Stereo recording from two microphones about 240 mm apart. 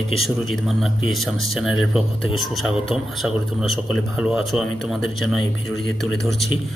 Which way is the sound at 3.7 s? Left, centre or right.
Centre.